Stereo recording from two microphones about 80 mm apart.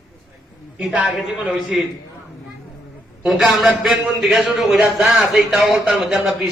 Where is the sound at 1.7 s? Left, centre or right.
Centre.